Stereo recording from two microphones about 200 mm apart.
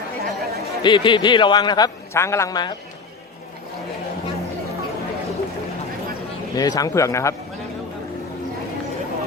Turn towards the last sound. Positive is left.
turn(degrees=15)  # may be behind; listen again after turning